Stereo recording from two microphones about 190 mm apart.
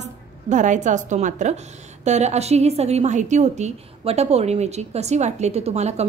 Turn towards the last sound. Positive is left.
turn(degrees=-35)  # may be behind; listen again after turning